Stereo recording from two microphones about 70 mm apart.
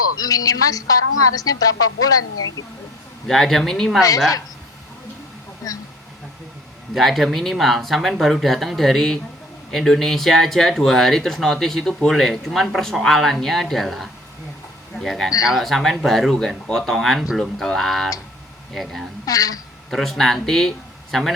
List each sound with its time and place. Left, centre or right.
0.2 s a woman's voice: left
3.2 s speech: centre
5.6 s a woman's voice: left
6.9 s speech: centre
19.2 s a woman's voice: left
19.9 s speech: centre